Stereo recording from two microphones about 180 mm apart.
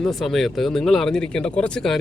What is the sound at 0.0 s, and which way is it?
Speech, centre (ahead or behind).